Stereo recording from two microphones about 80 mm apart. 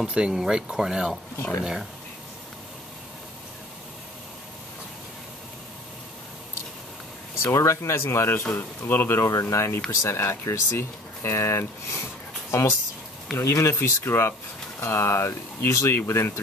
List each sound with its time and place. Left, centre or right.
0.0 s speech: centre
1.3 s speech: left
1.6 s speech: centre
7.3 s speech: left
9.3 s speech: left